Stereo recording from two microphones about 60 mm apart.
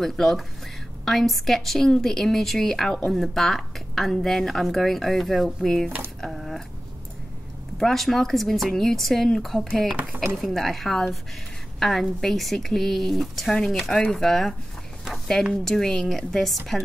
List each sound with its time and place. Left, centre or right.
0.0 s speech: centre
6.2 s a sound: centre
7.7 s speech: centre
9.9 s speech: right
10.3 s speech: centre
15.6 s speech: centre